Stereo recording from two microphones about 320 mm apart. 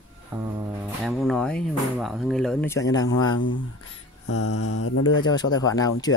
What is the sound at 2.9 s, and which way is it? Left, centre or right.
Speech, left.